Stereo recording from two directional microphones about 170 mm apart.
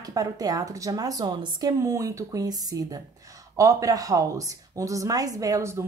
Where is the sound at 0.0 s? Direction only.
20° right (ahead or behind).